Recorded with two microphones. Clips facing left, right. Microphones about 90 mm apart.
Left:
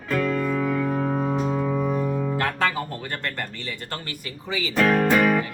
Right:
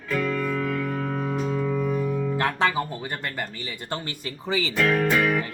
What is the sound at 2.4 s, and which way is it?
Guitar, 20° right (ahead or behind).